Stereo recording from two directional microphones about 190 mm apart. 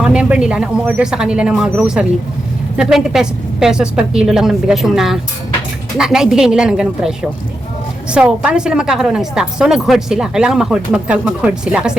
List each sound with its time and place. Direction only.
0.0 s a woman's voice: 5° right (ahead or behind)